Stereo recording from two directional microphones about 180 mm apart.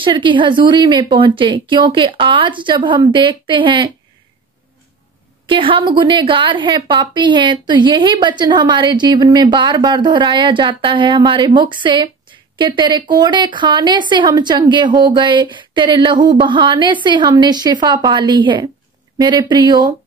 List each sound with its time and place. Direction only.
0.0 s a woman's voice: 25° right (ahead or behind)
5.5 s a woman's voice: 30° right (ahead or behind)